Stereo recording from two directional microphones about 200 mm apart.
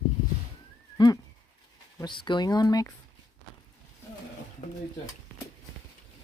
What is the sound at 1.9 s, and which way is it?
Speech, 20° left (ahead or behind).